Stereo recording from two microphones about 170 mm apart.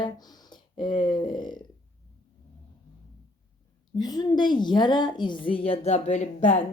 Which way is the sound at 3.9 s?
25° left (ahead or behind).